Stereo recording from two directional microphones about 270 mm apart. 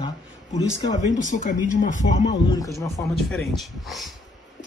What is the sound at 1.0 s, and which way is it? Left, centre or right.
Speech, left.